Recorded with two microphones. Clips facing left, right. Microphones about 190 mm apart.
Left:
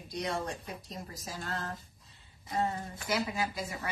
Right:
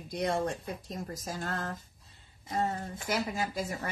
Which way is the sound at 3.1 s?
50° right (ahead or behind).